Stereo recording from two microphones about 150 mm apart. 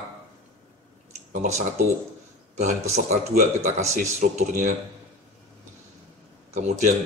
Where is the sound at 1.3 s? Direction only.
55° right (ahead or behind).